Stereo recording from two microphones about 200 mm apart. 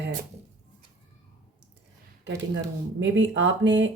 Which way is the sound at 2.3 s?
65° right (ahead or behind).